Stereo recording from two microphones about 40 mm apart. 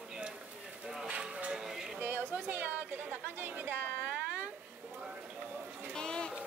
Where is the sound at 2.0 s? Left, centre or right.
Right.